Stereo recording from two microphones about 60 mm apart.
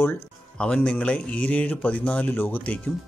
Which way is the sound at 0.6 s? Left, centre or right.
Centre.